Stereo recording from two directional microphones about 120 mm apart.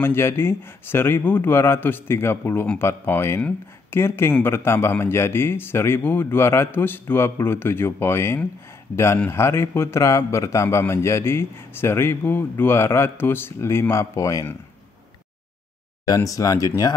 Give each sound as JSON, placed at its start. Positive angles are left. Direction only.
{"t": 0.0, "sound": "speech", "side_deg": 20}
{"t": 16.1, "sound": "speech", "side_deg": 30}